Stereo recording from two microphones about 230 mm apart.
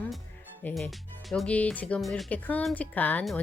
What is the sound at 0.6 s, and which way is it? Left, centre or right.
Speech, centre.